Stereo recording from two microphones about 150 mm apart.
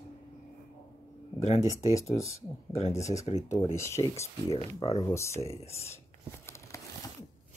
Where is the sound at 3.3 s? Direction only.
50° left (ahead or behind).